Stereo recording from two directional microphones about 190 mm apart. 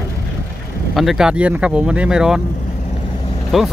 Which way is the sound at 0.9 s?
Centre (ahead or behind).